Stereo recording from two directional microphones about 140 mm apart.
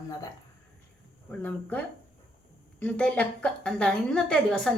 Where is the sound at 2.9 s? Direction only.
10° left (ahead or behind).